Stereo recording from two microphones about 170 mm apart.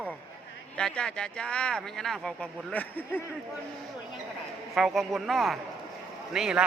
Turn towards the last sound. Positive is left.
turn(degrees=-5)  # may be behind; listen again after turning